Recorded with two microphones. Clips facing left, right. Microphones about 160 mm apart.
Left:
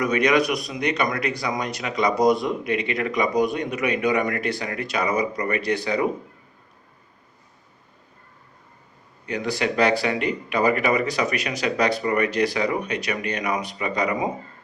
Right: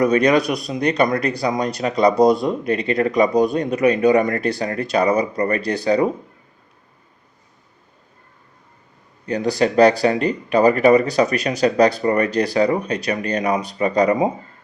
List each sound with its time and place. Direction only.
0.0 s speech: 35° right (ahead or behind)
9.2 s speech: 35° right (ahead or behind)